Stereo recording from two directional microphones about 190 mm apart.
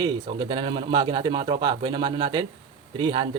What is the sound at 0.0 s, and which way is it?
Speech, 25° right (ahead or behind).